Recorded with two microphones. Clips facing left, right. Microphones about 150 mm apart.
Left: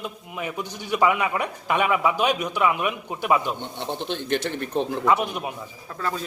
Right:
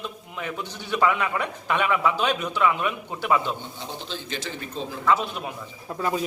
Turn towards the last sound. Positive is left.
turn(degrees=-15)  # may be behind; listen again after turning